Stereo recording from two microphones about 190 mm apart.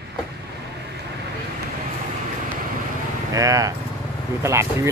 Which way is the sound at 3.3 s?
15° right (ahead or behind).